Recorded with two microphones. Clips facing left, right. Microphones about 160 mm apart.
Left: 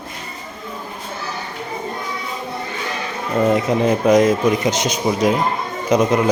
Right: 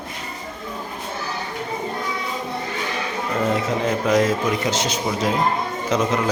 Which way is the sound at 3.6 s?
15° left (ahead or behind).